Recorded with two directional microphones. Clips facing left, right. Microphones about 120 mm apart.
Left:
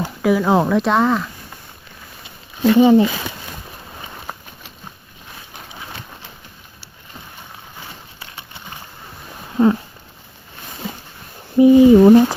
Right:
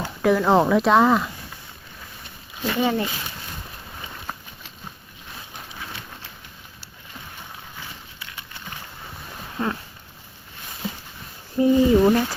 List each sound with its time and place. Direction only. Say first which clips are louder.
0.0 s speech: left 2 dB; 5° left (ahead or behind)
2.7 s speech: left 11 dB; 25° left (ahead or behind)
9.6 s a sound: left 12 dB; 15° left (ahead or behind)
11.5 s speech: left 8 dB; 20° left (ahead or behind)